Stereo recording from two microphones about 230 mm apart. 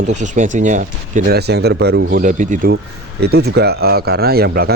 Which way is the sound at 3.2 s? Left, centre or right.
Right.